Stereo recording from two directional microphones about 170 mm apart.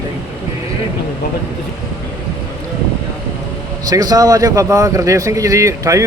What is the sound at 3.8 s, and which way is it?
A man's voice, 20° right (ahead or behind).